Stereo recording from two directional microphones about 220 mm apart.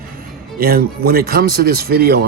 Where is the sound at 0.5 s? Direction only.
45° right (ahead or behind).